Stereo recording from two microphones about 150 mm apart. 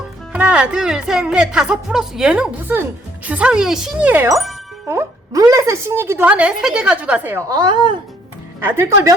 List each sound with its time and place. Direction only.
0.3 s a woman's voice: 10° right (ahead or behind)
7.4 s a woman's voice: 25° right (ahead or behind)
8.6 s a woman's voice: 15° right (ahead or behind)